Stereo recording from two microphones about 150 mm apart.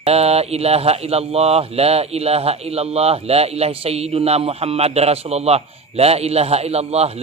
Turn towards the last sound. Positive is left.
turn(degrees=-45)  # may be behind; listen again after turning